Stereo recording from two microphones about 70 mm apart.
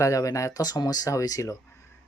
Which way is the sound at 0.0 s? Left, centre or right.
Left.